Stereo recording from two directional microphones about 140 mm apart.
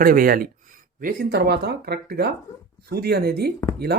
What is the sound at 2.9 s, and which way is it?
Speech, 90° right.